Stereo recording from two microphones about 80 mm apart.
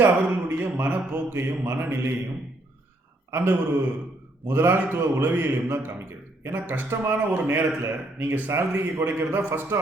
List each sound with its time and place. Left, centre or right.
0.0 s speech: right
3.3 s a man's voice: right